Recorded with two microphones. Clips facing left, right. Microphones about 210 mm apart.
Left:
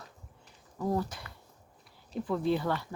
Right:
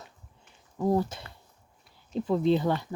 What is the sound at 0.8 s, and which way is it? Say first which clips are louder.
Speech: right 5 dB; 25° right (ahead or behind).